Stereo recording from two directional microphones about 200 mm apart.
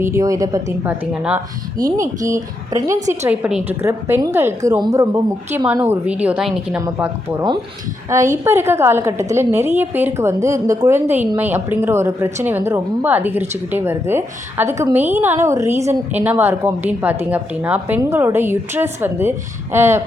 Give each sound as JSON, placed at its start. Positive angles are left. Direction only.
{"t": 0.0, "sound": "a woman's voice", "side_deg": -15}
{"t": 1.1, "sound": "speech", "side_deg": -5}
{"t": 2.2, "sound": "a woman's voice", "side_deg": -15}